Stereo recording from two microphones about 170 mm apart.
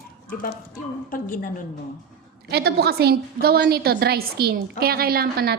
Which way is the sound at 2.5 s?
70° right (ahead or behind).